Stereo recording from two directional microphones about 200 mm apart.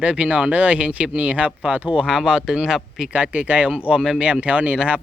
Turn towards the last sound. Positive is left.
turn(degrees=-5)  # may be behind; listen again after turning